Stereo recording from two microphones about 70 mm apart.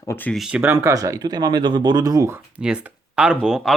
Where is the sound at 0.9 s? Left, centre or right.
Right.